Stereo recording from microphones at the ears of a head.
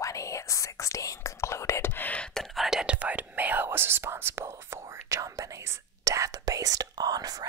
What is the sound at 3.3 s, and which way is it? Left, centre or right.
Whispering, right.